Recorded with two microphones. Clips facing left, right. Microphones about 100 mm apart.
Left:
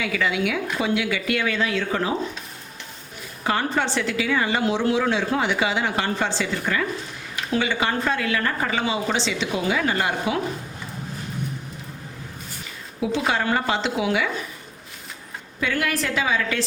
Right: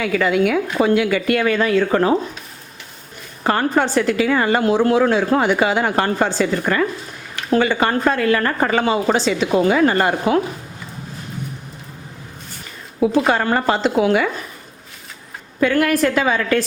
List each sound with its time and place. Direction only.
0.0 s a woman's voice: 45° right (ahead or behind)
3.4 s a woman's voice: 45° right (ahead or behind)
13.0 s a woman's voice: 45° right (ahead or behind)
15.6 s a woman's voice: 50° right (ahead or behind)